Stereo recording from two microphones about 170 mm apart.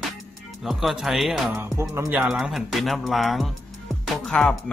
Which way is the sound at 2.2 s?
5° right (ahead or behind).